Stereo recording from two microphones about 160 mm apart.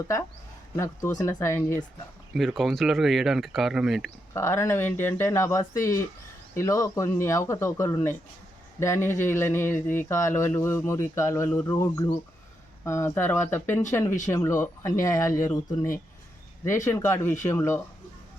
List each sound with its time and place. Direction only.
0.8 s speech: 20° left (ahead or behind)
2.3 s speech: centre (ahead or behind)
4.4 s speech: 15° left (ahead or behind)